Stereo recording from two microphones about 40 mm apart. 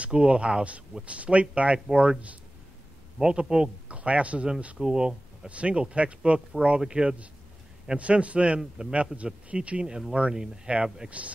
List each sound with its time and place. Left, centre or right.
0.1 s a man's voice: right
1.9 s speech: centre
3.2 s speech: centre
3.9 s speech: right
4.7 s speech: centre
5.5 s a man's voice: right
6.8 s speech: centre
8.0 s a man's voice: right; by 10.7 s centre
11.1 s a man's voice: right